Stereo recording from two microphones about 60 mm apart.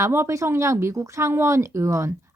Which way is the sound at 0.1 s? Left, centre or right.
Right.